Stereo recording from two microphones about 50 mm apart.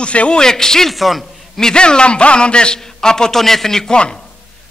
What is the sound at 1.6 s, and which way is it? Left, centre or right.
A man's voice, centre.